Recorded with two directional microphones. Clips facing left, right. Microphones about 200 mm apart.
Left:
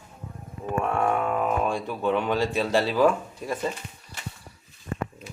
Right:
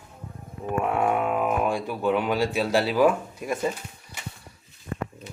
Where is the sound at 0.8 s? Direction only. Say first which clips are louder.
Right 1 dB; 15° right (ahead or behind).